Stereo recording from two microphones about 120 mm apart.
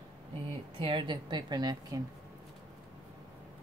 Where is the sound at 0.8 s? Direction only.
45° right (ahead or behind).